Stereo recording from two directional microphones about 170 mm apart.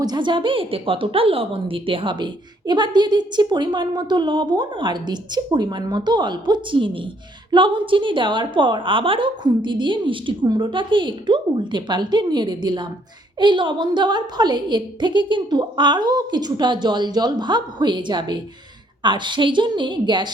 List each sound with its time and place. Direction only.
0.0 s a woman's voice: 25° right (ahead or behind)